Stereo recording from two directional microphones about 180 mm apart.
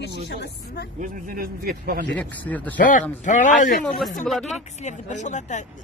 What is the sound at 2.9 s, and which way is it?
Speech, 45° left (ahead or behind).